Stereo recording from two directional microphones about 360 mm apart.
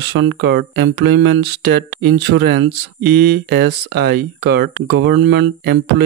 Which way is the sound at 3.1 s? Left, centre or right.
Right.